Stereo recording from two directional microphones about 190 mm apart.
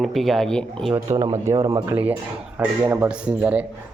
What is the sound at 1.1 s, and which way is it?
Speech, 30° right (ahead or behind).